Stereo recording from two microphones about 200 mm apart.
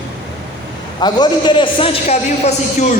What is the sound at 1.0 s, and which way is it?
A man's voice, 20° left (ahead or behind).